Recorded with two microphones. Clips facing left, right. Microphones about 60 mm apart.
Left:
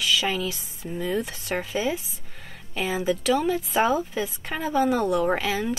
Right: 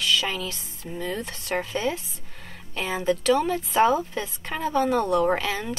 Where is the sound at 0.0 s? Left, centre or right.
Centre.